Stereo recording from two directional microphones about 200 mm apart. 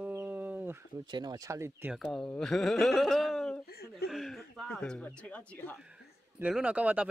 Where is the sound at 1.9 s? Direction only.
Centre (ahead or behind).